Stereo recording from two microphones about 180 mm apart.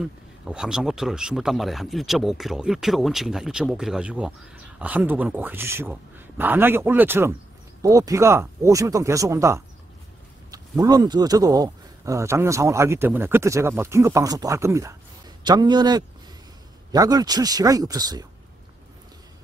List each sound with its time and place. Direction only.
0.0 s a man's voice: 5° right (ahead or behind); by 18.2 s 20° right (ahead or behind)